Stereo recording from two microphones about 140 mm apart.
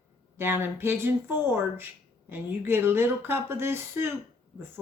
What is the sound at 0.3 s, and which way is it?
A woman's voice, 15° right (ahead or behind).